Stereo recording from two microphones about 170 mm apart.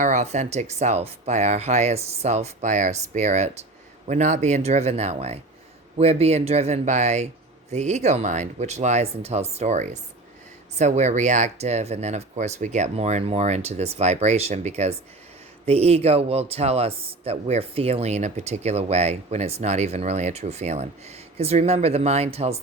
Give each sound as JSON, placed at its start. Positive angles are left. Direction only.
{"t": 0.0, "sound": "a man's voice", "side_deg": -45}